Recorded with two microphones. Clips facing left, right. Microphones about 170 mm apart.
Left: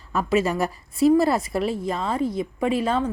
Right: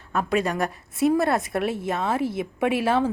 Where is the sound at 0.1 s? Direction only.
Centre (ahead or behind).